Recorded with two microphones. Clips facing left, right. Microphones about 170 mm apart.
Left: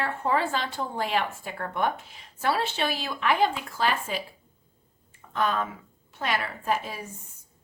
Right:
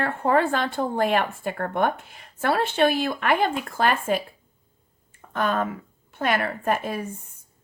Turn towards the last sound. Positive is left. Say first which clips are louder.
# right 4 dB
turn(degrees=-55)  # may be behind; listen again after turning